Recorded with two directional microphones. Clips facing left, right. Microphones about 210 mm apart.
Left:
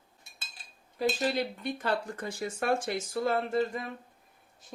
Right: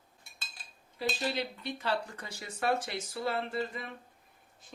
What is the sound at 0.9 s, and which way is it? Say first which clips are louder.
Speech: left 5 dB; 45° left (ahead or behind).